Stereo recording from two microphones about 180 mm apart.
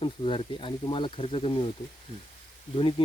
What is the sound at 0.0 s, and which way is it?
Speech, 30° left (ahead or behind).